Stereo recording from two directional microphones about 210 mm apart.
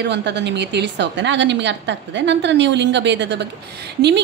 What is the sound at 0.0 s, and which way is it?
A woman's voice, 55° right (ahead or behind).